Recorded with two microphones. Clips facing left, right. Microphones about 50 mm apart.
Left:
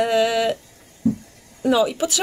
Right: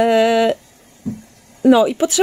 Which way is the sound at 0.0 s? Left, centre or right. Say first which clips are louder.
Right 5 dB; right.